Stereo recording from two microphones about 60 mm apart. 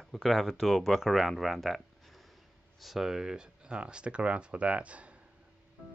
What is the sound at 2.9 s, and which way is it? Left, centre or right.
Speech, centre.